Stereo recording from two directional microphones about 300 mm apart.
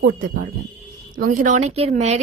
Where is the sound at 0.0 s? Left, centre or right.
Right.